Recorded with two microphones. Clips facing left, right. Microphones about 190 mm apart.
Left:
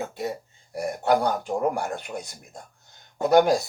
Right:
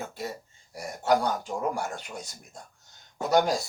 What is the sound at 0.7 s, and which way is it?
Speech, 60° left (ahead or behind).